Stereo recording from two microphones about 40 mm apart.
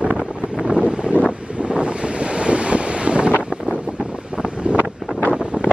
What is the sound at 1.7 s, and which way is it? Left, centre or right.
Wind noise, right.